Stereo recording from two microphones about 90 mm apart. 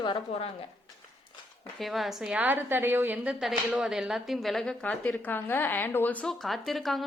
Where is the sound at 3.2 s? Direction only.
5° right (ahead or behind); by 6.2 s 20° left (ahead or behind).